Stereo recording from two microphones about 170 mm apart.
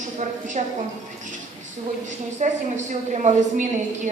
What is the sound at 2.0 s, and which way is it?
A woman's voice, 45° right (ahead or behind).